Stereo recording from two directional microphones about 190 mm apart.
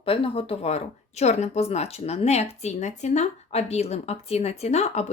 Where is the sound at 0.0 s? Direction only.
30° left (ahead or behind).